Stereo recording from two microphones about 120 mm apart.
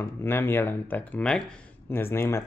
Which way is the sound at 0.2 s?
20° left (ahead or behind).